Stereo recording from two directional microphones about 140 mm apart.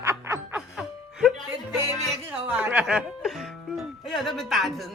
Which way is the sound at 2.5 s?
10° right (ahead or behind).